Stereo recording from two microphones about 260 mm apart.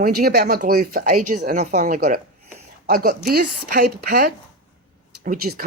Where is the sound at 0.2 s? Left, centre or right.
Right.